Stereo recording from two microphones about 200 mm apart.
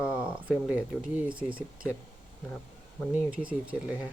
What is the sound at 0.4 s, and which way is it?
Speech, 5° right (ahead or behind).